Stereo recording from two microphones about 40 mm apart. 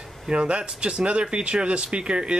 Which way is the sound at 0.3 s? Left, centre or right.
Right.